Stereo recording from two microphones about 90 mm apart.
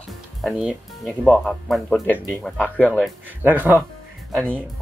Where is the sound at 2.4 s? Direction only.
15° left (ahead or behind).